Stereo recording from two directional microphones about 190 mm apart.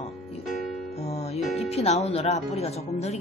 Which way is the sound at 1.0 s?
35° left (ahead or behind).